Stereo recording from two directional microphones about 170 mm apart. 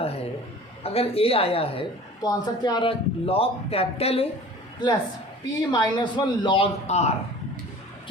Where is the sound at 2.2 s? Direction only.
25° left (ahead or behind).